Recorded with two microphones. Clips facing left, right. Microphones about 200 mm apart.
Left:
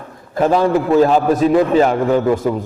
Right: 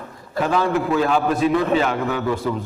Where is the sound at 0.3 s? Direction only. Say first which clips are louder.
Left 6 dB; 45° left (ahead or behind).